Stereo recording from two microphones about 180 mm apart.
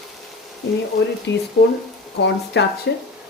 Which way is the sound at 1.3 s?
75° left (ahead or behind).